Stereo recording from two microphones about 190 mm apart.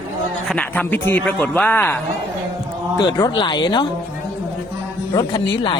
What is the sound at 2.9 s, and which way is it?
Speech, 20° left (ahead or behind).